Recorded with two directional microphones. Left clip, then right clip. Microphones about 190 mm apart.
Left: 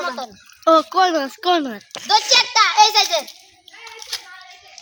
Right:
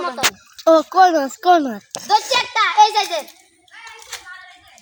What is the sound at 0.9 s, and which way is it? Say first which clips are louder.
Speech: right 4 dB; 40° right (ahead or behind).